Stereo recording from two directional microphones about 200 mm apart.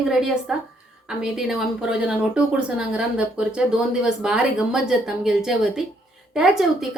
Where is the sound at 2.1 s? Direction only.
5° right (ahead or behind).